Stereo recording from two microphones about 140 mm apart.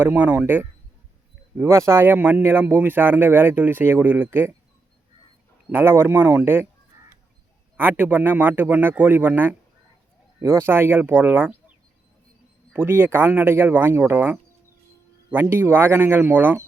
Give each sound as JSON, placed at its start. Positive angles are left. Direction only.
{"t": 0.0, "sound": "speech", "side_deg": -10}
{"t": 5.6, "sound": "speech", "side_deg": -15}
{"t": 7.8, "sound": "speech", "side_deg": -15}
{"t": 12.7, "sound": "speech", "side_deg": -15}